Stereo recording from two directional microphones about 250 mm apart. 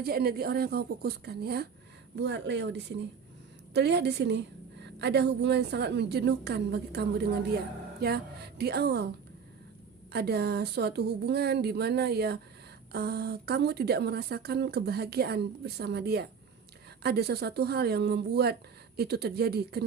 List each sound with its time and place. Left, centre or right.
0.0 s a woman's voice: right
10.1 s a woman's voice: right